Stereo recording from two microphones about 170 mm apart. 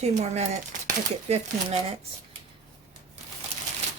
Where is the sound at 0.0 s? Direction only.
40° right (ahead or behind).